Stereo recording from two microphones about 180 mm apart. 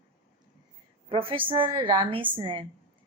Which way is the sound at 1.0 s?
30° right (ahead or behind).